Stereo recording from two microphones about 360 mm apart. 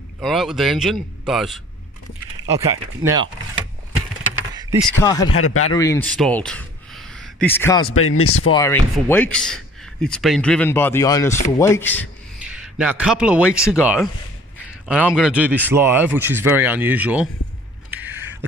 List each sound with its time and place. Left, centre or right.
0.2 s speech: centre
4.9 s speech: centre
5.3 s speech: left
5.7 s speech: centre
7.8 s speech: left
8.5 s speech: centre
17.9 s a sound: centre